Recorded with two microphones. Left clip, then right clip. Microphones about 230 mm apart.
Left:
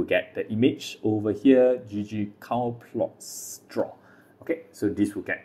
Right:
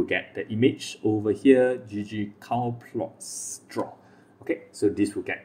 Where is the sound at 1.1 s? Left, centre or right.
Centre.